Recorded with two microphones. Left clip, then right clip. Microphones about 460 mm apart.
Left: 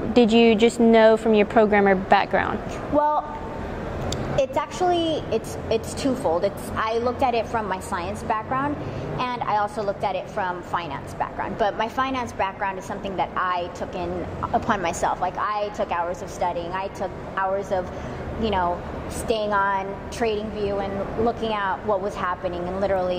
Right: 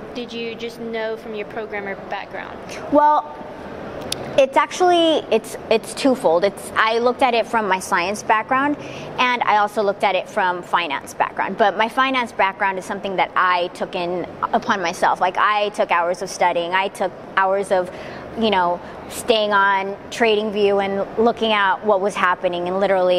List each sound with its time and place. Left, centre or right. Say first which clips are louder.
0.1 s a woman's voice: left 13 dB; left
3.0 s a woman's voice: right 6 dB; right